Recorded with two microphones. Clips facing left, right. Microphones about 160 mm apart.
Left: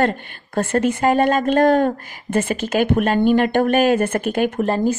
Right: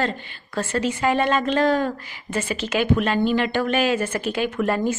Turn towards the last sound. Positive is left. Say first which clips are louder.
# left 4 dB
turn(degrees=50)  # may be behind; listen again after turning